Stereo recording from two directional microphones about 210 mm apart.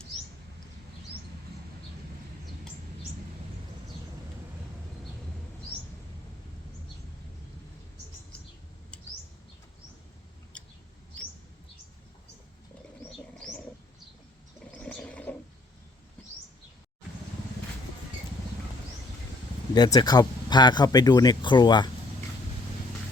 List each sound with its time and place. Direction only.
10.5 s mouse: 5° left (ahead or behind)
14.7 s a sound: 5° left (ahead or behind)
19.7 s speech: 20° left (ahead or behind)